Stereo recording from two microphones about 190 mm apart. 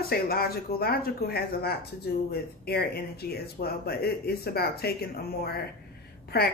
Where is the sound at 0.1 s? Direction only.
55° left (ahead or behind).